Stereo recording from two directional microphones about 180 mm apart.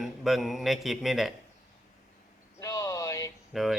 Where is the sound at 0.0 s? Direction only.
Centre (ahead or behind).